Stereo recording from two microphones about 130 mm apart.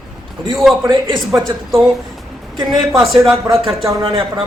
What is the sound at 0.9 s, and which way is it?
Speech, 35° right (ahead or behind).